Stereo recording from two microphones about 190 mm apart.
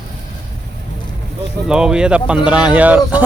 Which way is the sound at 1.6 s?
5° right (ahead or behind).